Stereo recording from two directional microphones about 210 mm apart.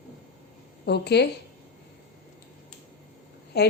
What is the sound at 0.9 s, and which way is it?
Speech, 50° left (ahead or behind).